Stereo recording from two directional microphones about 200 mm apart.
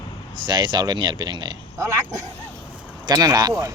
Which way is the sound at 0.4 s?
20° right (ahead or behind).